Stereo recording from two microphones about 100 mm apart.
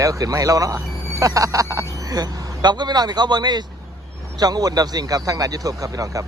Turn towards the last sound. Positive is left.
turn(degrees=-35)  # may be behind; listen again after turning